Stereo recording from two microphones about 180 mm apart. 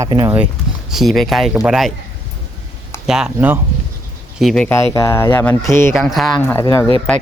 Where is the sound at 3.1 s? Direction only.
5° right (ahead or behind); by 6.0 s 15° left (ahead or behind).